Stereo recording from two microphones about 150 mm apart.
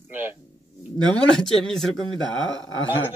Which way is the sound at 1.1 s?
5° left (ahead or behind).